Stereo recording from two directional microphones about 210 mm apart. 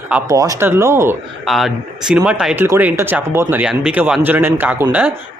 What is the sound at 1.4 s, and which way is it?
Speech, centre (ahead or behind).